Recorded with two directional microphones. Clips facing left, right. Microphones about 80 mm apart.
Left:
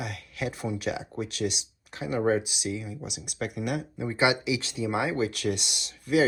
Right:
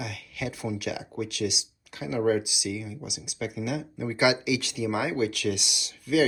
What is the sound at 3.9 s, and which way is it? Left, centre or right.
Speech, left.